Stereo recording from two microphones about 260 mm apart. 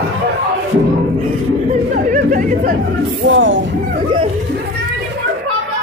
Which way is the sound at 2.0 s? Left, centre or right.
Right.